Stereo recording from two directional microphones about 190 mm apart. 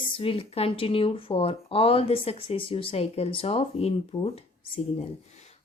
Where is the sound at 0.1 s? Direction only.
30° left (ahead or behind).